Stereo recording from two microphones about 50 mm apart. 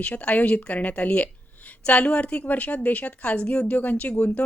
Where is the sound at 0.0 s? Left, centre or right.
Left.